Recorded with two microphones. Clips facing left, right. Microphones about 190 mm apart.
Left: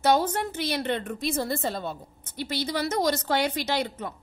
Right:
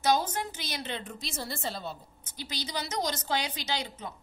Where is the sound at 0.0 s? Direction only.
60° left (ahead or behind).